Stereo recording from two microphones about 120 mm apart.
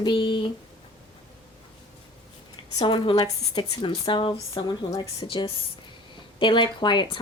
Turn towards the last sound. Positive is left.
turn(degrees=40)  # may be behind; listen again after turning